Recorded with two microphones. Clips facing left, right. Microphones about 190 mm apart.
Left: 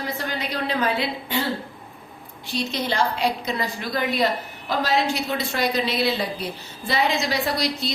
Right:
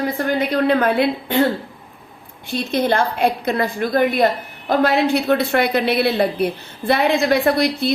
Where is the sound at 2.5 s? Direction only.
55° right (ahead or behind).